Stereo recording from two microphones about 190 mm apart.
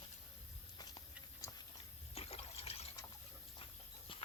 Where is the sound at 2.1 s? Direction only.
30° left (ahead or behind).